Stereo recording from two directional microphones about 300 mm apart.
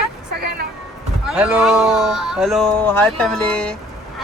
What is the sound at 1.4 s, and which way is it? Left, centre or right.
Speech, centre.